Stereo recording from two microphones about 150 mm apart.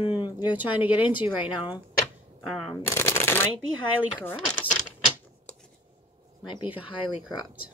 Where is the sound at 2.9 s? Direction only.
15° left (ahead or behind).